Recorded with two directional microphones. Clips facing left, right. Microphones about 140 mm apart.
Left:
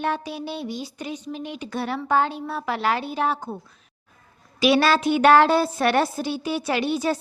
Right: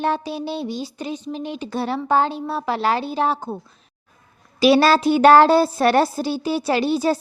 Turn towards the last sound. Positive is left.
turn(degrees=-35)  # may be behind; listen again after turning